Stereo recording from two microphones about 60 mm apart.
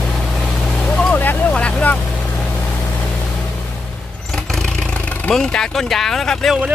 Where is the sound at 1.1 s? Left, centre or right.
Left.